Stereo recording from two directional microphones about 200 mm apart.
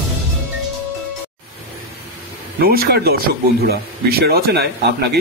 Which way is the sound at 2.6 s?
50° right (ahead or behind).